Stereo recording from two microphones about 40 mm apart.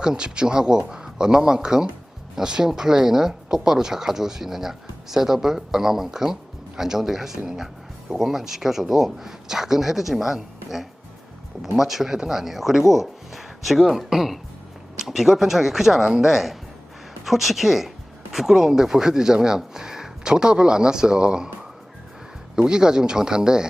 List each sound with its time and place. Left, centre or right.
0.0 s speech: right
22.5 s speech: centre